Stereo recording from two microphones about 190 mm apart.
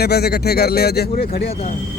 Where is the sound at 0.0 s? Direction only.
60° left (ahead or behind).